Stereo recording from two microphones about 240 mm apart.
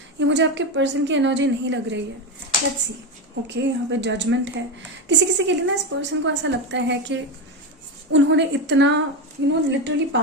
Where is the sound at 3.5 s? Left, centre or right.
Right.